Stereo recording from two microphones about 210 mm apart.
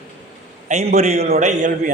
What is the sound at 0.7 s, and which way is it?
A man's voice, 30° right (ahead or behind).